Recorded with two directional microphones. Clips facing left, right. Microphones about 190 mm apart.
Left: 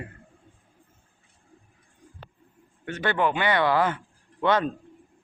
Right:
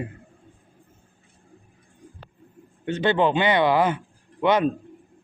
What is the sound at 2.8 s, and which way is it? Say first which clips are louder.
Speech: right 4 dB; 20° right (ahead or behind).